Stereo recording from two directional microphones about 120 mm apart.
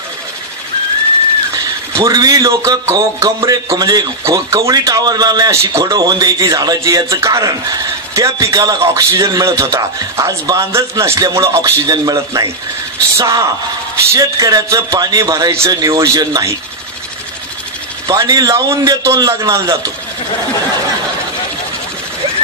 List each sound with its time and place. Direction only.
2.0 s a man's voice: 30° right (ahead or behind)
18.0 s a man's voice: 30° right (ahead or behind)